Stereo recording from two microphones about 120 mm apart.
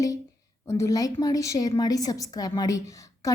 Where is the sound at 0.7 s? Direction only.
25° left (ahead or behind).